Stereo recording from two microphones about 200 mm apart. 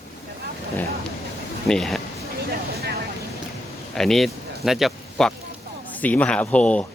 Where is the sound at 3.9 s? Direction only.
Centre (ahead or behind).